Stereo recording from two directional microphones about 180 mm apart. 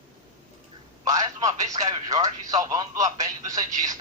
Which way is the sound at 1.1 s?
20° right (ahead or behind).